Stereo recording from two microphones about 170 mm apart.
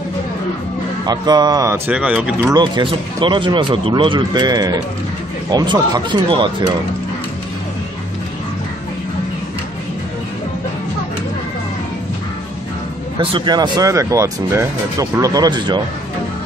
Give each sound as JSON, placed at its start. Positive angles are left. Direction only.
{"t": 1.0, "sound": "speech", "side_deg": -25}
{"t": 1.9, "sound": "speech", "side_deg": -5}
{"t": 2.5, "sound": "speech", "side_deg": -25}
{"t": 13.2, "sound": "speech", "side_deg": -30}